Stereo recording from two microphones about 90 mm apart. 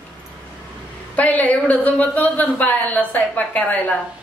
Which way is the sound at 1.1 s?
15° left (ahead or behind).